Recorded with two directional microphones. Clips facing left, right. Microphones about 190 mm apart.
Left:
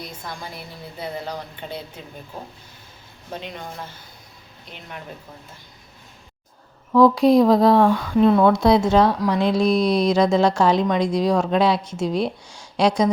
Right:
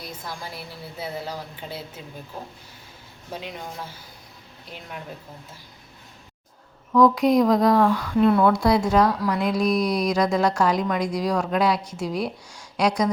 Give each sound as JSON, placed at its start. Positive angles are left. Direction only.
{"t": 0.3, "sound": "a woman's voice", "side_deg": -5}
{"t": 3.3, "sound": "speech", "side_deg": -10}
{"t": 6.9, "sound": "speech", "side_deg": 30}